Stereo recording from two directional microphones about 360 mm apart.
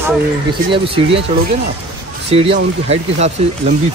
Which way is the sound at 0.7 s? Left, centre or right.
Centre.